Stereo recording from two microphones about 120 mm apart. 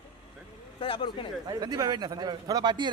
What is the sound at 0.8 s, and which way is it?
Speech, 45° left (ahead or behind).